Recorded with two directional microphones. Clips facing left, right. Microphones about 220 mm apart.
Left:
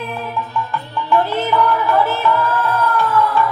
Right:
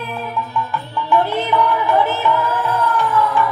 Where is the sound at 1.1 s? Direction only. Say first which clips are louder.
Even; 15° right (ahead or behind).